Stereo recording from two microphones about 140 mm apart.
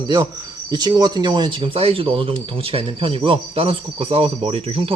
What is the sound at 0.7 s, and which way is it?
Speech, 30° right (ahead or behind).